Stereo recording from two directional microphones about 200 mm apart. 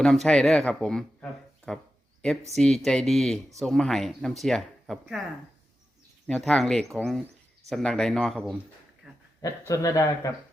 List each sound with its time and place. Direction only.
0.0 s speech: centre (ahead or behind)
6.2 s speech: 5° left (ahead or behind)
9.0 s dog: centre (ahead or behind)
9.4 s speech: 15° left (ahead or behind)